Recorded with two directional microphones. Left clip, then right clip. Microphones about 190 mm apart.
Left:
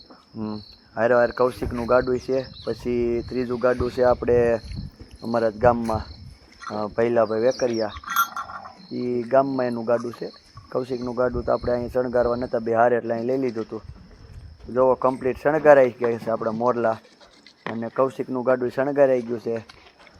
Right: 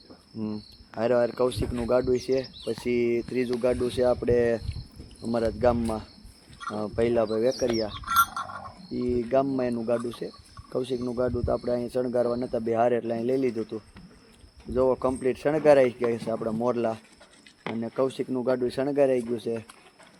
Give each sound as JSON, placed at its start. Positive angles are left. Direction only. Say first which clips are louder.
{"t": 0.4, "sound": "speech", "louder": "left 3 dB", "side_deg": -5}
{"t": 3.1, "sound": "speech", "louder": "left 1 dB", "side_deg": 45}
{"t": 3.5, "sound": "speech", "louder": "left 5 dB", "side_deg": 5}
{"t": 7.6, "sound": "a sound", "louder": "left 3 dB", "side_deg": 10}
{"t": 9.0, "sound": "speech", "louder": "left 5 dB", "side_deg": 0}
{"t": 14.7, "sound": "speech", "louder": "left 5 dB", "side_deg": 0}